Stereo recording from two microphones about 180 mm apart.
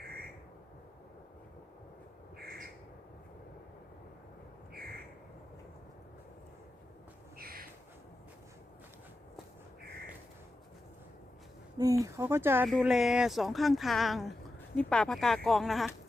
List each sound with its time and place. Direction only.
2.4 s bird: 55° right (ahead or behind)
7.3 s a sound: 55° right (ahead or behind)
11.8 s speech: 20° right (ahead or behind)
12.6 s speech: centre (ahead or behind)